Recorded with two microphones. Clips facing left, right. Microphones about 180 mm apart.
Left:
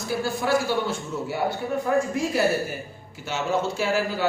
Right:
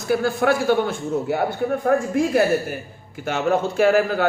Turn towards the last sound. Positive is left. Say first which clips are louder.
# right 7 dB
turn(degrees=-55)  # may be behind; listen again after turning